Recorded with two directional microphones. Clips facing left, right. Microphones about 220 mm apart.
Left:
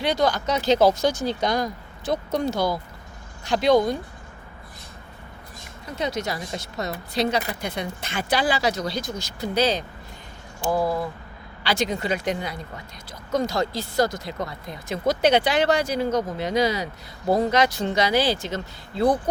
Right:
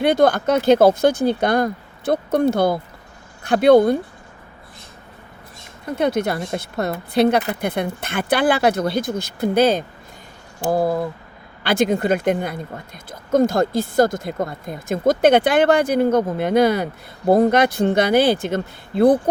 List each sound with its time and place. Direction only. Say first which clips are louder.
0.0 s speech: right 7 dB; 55° right (ahead or behind)
5.8 s speech: right 8 dB; 55° right (ahead or behind)